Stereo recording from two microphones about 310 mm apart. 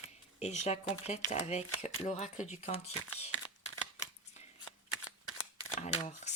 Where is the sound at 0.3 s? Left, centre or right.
Left.